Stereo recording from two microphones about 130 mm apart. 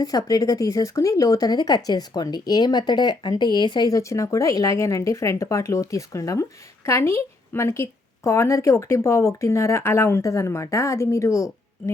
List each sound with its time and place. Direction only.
0.0 s speech: 30° left (ahead or behind)